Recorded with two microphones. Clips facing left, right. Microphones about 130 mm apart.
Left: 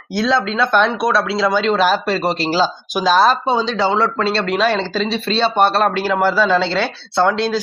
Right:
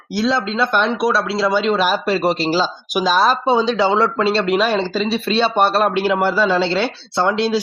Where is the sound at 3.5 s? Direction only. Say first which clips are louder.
Right 2 dB; 20° right (ahead or behind).